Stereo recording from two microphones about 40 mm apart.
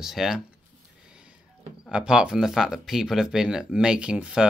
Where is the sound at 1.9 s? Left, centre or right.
Right.